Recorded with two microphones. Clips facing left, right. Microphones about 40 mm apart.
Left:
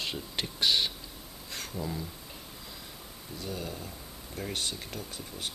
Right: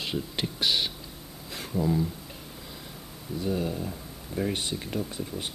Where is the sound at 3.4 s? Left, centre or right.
Centre.